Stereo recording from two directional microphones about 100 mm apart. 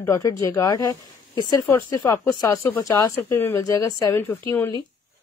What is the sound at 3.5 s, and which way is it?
Speech, 35° left (ahead or behind).